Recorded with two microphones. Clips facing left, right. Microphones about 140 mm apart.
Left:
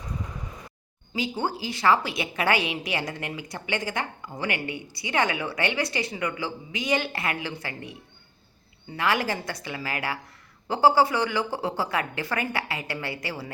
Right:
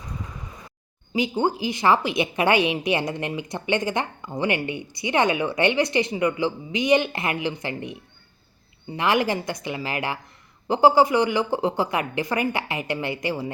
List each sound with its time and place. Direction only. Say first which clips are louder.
1.1 s a woman's voice: right 6 dB; 20° right (ahead or behind)